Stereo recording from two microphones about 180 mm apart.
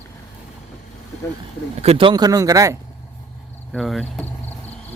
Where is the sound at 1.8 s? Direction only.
30° right (ahead or behind).